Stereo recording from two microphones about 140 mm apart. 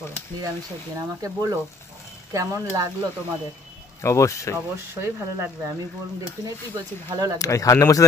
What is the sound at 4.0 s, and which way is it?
Speech, 20° left (ahead or behind).